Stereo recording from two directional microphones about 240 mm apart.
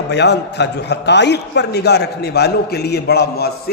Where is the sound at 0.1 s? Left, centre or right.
Left.